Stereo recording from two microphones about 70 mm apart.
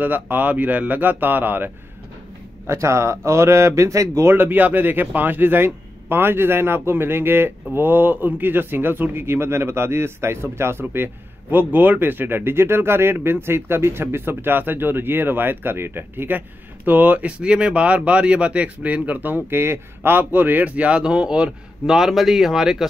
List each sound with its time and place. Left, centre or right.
0.0 s speech: right
2.6 s speech: right
4.3 s a man's voice: right; by 22.8 s centre